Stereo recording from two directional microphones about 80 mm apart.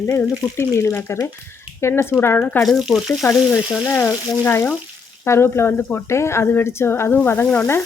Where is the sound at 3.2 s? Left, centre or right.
Left.